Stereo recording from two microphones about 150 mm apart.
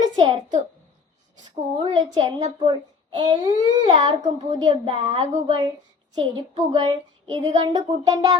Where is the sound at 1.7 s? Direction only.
35° right (ahead or behind).